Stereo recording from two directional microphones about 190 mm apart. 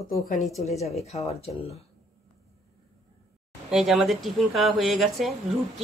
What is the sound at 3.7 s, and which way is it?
A woman's voice, centre (ahead or behind).